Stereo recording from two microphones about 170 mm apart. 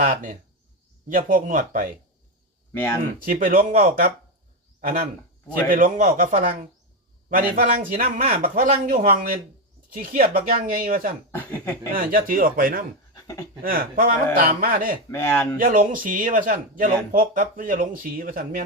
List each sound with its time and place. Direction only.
0.0 s a man's voice: 50° right (ahead or behind)
2.7 s speech: 15° left (ahead or behind)
3.2 s a man's voice: 55° right (ahead or behind)
11.3 s speech: 10° left (ahead or behind)
11.9 s speech: 55° right (ahead or behind)
13.1 s pant: 20° left (ahead or behind)
13.6 s speech: 55° right (ahead or behind)
15.1 s speech: 15° left (ahead or behind)
15.5 s speech: 55° right (ahead or behind)